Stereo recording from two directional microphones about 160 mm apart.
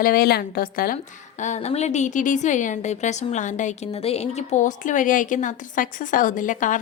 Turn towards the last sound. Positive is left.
turn(degrees=55)  # may be behind; listen again after turning